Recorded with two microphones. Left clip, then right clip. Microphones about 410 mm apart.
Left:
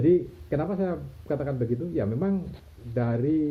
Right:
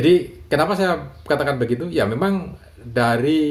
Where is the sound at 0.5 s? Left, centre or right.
Centre.